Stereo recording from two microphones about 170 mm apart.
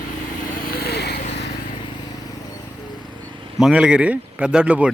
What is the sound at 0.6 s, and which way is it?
Vehicle, 60° left (ahead or behind).